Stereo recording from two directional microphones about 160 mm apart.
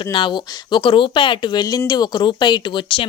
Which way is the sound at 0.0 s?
30° left (ahead or behind).